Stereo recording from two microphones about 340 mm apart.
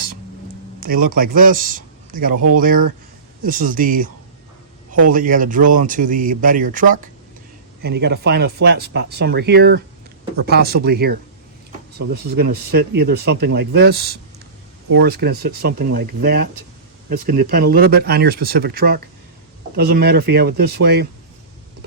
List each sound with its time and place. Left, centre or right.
0.8 s a man's voice: right